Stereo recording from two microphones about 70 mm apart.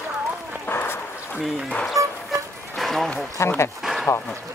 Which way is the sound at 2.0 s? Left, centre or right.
Right.